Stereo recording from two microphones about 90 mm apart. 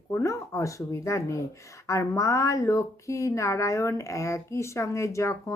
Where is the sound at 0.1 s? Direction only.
35° left (ahead or behind).